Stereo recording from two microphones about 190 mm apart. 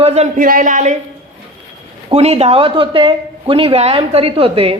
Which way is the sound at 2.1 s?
35° right (ahead or behind).